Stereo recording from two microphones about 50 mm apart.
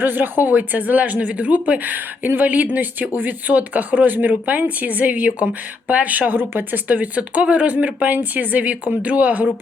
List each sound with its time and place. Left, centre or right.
0.0 s speech: right
6.5 s speech: right
6.8 s speech: right